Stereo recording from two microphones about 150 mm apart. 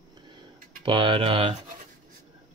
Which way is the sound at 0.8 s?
35° right (ahead or behind).